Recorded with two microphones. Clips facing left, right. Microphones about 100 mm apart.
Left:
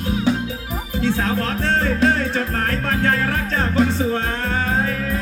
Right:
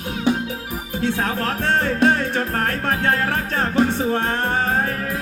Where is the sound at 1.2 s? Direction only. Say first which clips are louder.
Left 1 dB; 50° right (ahead or behind).